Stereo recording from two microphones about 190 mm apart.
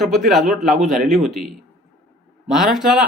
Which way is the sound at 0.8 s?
40° right (ahead or behind).